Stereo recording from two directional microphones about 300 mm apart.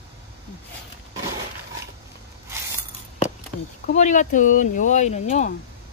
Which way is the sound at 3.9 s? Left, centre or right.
Left.